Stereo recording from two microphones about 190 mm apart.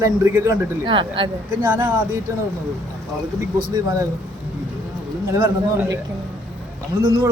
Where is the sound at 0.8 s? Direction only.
25° right (ahead or behind).